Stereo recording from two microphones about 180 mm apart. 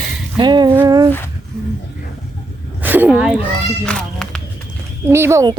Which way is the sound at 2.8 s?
10° right (ahead or behind).